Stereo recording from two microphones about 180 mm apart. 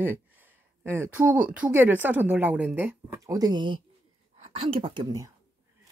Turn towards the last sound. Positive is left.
turn(degrees=-20)  # may be behind; listen again after turning